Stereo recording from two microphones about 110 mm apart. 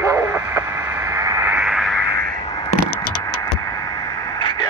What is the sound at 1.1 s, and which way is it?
Radio, 30° right (ahead or behind).